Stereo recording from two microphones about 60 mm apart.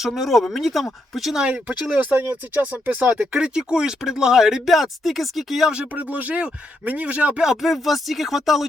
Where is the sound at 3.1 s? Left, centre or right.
Centre.